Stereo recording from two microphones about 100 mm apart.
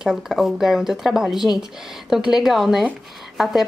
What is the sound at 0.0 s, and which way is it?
A woman's voice, centre (ahead or behind).